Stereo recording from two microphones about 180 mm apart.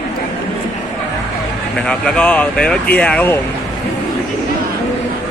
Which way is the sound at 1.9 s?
5° left (ahead or behind).